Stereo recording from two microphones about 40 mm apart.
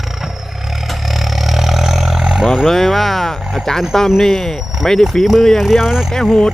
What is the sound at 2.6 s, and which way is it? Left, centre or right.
Speech, centre.